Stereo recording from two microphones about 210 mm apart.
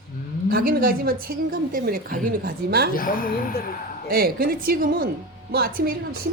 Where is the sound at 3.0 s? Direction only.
40° left (ahead or behind).